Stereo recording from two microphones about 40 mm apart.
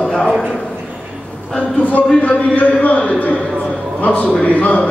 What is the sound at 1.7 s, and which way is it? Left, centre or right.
Speech, left.